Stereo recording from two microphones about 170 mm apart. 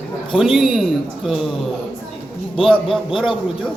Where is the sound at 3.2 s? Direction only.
Centre (ahead or behind).